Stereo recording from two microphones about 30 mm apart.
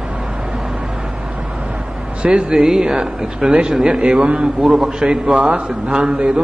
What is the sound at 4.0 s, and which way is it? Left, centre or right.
Speech, right.